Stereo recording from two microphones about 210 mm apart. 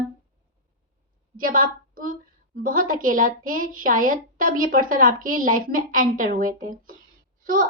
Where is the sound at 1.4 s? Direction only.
40° right (ahead or behind).